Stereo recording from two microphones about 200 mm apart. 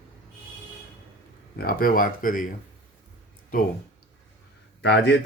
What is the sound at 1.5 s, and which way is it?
Speech, 45° left (ahead or behind).